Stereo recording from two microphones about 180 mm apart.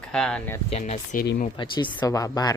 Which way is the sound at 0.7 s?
35° left (ahead or behind).